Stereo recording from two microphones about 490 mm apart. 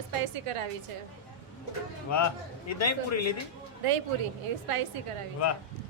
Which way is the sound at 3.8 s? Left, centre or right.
Right.